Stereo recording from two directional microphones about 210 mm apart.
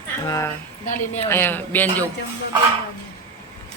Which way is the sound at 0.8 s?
35° left (ahead or behind).